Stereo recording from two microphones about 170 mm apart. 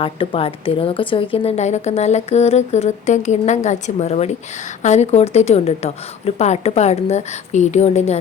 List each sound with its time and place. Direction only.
0.0 s speech: 30° left (ahead or behind)